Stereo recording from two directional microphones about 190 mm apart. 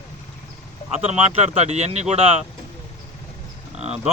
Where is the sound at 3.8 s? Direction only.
35° right (ahead or behind).